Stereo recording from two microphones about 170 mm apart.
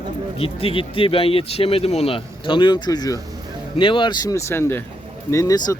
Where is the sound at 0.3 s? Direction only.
35° left (ahead or behind).